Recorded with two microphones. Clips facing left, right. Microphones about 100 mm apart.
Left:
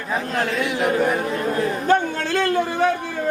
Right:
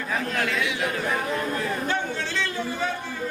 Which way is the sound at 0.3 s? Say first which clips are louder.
Left 6 dB; 45° left (ahead or behind).